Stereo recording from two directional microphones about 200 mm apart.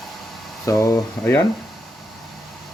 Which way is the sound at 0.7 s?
15° left (ahead or behind).